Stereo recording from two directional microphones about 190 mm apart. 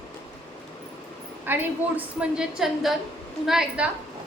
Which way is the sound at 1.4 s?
10° right (ahead or behind).